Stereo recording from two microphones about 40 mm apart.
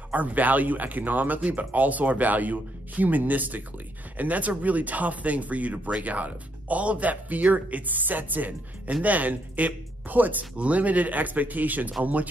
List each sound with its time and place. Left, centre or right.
0.1 s speech: right